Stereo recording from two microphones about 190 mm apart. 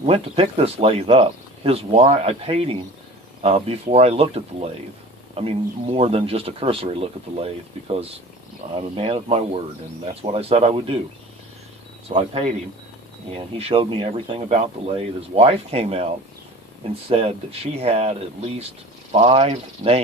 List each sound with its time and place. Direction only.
0.0 s speech: 30° right (ahead or behind)
12.1 s speech: 30° right (ahead or behind)
13.6 s speech: 30° right (ahead or behind)
17.1 s speech: 30° right (ahead or behind)